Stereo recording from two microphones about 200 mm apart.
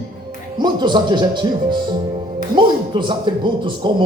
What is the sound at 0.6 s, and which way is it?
Speech, 20° right (ahead or behind).